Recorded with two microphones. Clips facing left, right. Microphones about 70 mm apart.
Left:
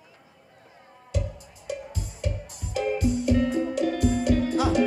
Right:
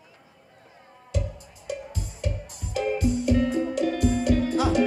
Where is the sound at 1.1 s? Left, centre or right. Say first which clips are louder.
Even; centre.